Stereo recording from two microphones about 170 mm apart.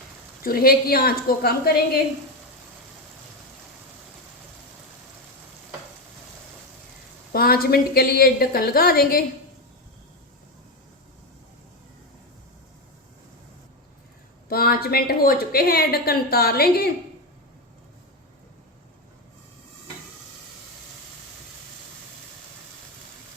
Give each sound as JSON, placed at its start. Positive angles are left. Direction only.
{"t": 0.4, "sound": "a woman's voice", "side_deg": 60}
{"t": 7.3, "sound": "a woman's voice", "side_deg": 60}
{"t": 14.5, "sound": "a woman's voice", "side_deg": 65}